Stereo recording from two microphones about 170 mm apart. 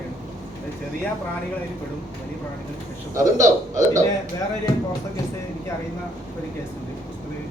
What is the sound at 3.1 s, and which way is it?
Speech, 20° right (ahead or behind).